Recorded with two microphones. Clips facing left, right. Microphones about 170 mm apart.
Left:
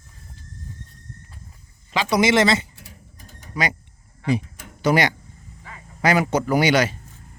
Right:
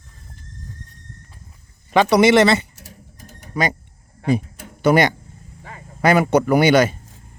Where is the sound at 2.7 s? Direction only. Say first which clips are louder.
Right 3 dB; 45° right (ahead or behind).